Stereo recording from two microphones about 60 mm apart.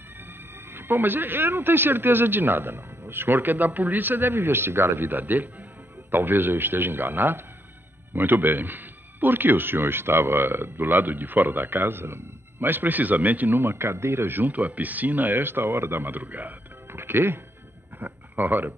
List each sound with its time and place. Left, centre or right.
0.7 s speech: right